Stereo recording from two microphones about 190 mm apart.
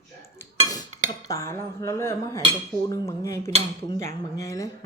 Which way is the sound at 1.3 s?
15° left (ahead or behind).